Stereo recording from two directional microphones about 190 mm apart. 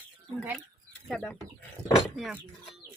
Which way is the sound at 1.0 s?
5° left (ahead or behind).